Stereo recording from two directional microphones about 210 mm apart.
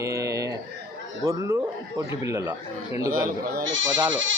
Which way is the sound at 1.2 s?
15° right (ahead or behind).